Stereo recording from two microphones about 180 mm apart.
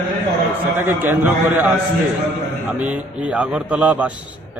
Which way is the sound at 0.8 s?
10° right (ahead or behind).